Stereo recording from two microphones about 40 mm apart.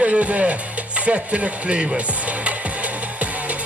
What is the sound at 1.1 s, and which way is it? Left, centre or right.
Speech, right.